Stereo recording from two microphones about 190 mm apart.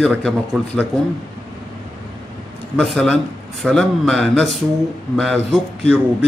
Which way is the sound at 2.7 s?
5° left (ahead or behind).